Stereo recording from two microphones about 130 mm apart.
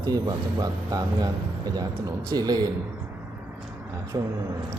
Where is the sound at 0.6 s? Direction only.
30° right (ahead or behind).